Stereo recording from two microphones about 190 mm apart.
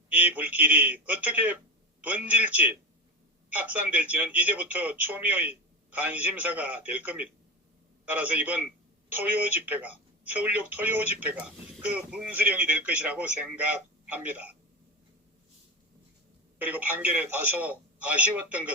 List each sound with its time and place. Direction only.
0.1 s a man's voice: 10° right (ahead or behind)
16.6 s speech: 10° right (ahead or behind)